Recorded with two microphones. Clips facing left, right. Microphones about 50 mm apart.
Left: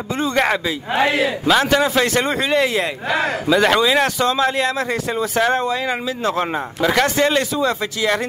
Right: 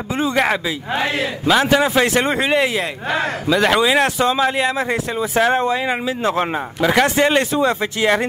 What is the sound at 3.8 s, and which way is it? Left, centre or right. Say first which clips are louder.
A man's voice: right 1 dB; centre.